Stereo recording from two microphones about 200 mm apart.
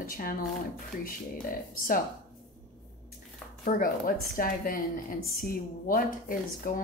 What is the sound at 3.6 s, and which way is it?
A woman's voice, 45° left (ahead or behind).